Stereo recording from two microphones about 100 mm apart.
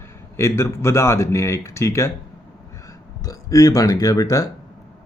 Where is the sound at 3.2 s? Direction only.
35° left (ahead or behind).